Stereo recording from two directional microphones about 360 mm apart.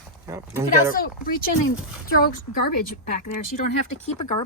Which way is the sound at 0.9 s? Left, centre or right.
Left.